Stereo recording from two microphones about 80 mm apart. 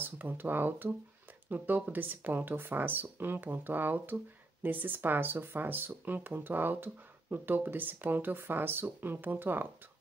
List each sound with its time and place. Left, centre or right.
0.0 s speech: right